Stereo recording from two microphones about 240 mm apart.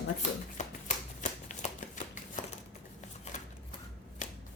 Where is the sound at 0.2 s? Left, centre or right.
Left.